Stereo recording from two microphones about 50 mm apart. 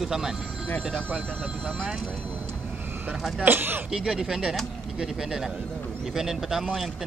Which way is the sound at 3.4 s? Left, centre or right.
Right.